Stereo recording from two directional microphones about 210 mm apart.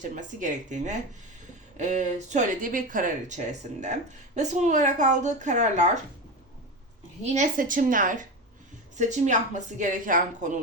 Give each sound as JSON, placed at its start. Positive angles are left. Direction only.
{"t": 0.2, "sound": "speech", "side_deg": -35}
{"t": 7.3, "sound": "speech", "side_deg": -40}